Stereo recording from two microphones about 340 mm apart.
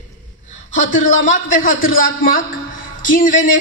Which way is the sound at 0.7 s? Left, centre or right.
Left.